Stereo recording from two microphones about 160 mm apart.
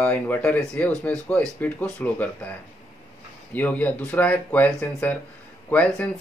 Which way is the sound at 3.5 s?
10° left (ahead or behind).